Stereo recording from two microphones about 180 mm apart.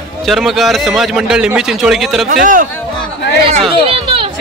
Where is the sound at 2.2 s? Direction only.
50° right (ahead or behind).